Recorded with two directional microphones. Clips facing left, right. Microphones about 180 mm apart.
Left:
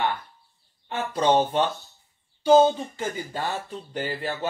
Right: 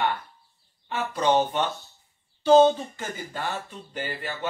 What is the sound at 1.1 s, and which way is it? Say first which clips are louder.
Speech: left 2 dB; 30° left (ahead or behind).